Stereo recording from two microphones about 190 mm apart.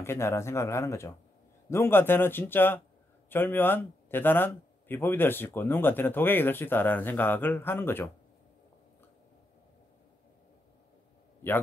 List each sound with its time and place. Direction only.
0.0 s a man's voice: 15° left (ahead or behind)